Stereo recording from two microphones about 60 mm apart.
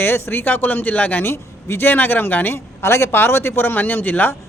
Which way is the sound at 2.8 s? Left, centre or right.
Left.